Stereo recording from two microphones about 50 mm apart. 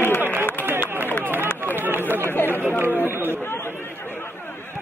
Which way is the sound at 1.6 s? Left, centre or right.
Right.